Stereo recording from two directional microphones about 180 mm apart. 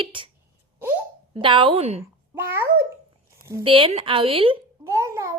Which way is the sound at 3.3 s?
15° right (ahead or behind).